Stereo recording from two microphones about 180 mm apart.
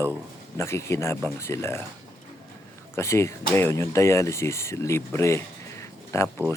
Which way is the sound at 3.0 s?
15° left (ahead or behind).